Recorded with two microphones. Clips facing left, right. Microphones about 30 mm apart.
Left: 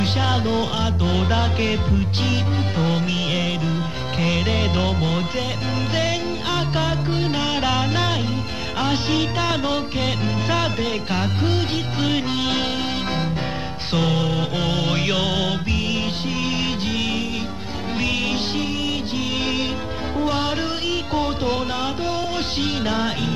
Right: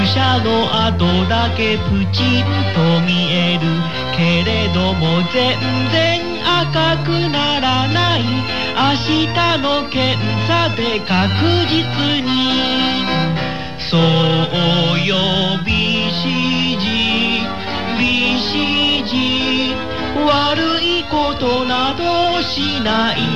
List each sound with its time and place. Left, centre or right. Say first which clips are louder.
0.0 s music: right 6 dB; right
1.3 s music: right 5 dB; right
4.3 s music: right 4 dB; right
15.0 s music: right 5 dB; right
17.9 s music: right 7 dB; right
18.8 s music: right 8 dB; right